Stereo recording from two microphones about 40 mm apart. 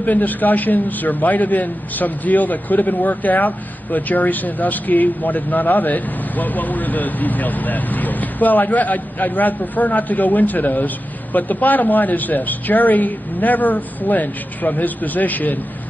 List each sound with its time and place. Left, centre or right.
0.0 s a man's voice: left